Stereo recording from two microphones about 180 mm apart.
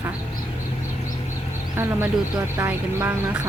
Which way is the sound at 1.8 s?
10° right (ahead or behind).